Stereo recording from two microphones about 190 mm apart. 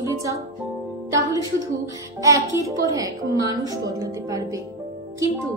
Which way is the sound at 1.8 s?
15° right (ahead or behind).